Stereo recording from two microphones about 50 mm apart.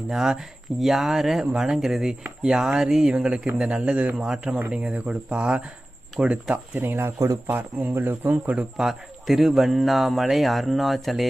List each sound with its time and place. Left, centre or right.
0.1 s speech: centre; by 4.1 s right
4.2 s speech: centre
6.7 s speech: right
8.8 s a man's voice: centre